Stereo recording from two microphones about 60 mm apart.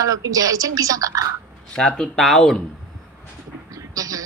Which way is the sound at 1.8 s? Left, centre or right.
Centre.